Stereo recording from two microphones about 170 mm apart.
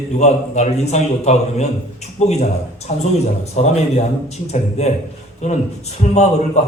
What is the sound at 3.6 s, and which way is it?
Speech, 40° left (ahead or behind).